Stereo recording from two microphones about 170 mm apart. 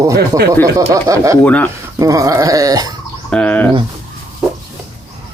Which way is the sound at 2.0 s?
20° right (ahead or behind).